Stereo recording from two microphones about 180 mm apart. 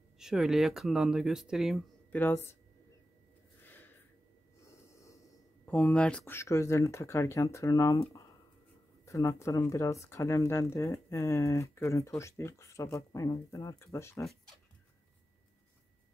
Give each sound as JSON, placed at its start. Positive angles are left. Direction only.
{"t": 0.2, "sound": "speech", "side_deg": -5}
{"t": 2.1, "sound": "speech", "side_deg": 10}
{"t": 3.6, "sound": "a sound", "side_deg": 10}
{"t": 5.7, "sound": "speech", "side_deg": 10}
{"t": 9.0, "sound": "speech", "side_deg": 15}